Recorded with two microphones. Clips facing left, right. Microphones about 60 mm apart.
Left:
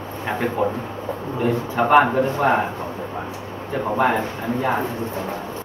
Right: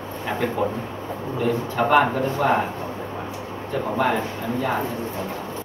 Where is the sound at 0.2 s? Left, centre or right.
Centre.